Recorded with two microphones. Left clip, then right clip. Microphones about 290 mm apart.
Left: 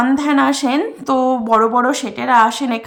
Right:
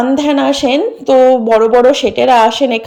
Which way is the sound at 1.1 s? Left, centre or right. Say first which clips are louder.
Right 8 dB; left.